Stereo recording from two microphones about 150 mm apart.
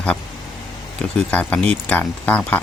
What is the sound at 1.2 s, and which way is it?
Speech, 10° left (ahead or behind).